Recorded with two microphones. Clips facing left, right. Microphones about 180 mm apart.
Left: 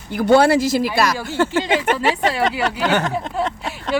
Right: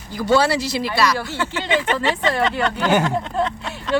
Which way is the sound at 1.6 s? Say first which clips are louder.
Left 2 dB; 10° left (ahead or behind).